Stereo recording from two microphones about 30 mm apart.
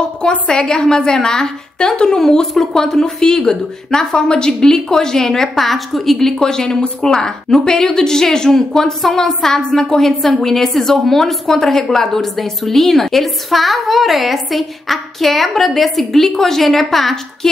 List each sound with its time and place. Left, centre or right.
0.5 s a woman's voice: left
5.6 s a woman's voice: centre
6.2 s a woman's voice: centre